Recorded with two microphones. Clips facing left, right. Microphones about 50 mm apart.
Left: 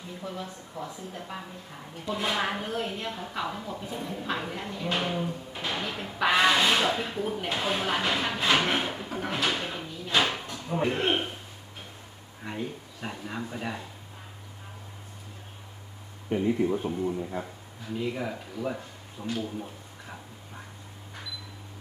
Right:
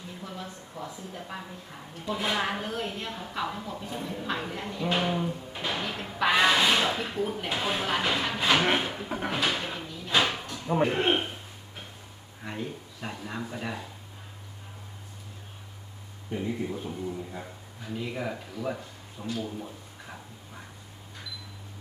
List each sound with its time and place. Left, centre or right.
0.2 s a woman's voice: centre
8.8 s a sound: centre
9.1 s vehicle: centre
10.8 s a man's voice: centre
12.5 s a woman's voice: centre
16.3 s a man's voice: left
17.9 s a woman's voice: centre
18.5 s speech: centre
19.4 s a sound: centre